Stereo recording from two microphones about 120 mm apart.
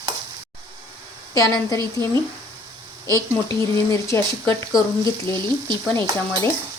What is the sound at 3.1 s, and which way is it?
Speech, 25° left (ahead or behind).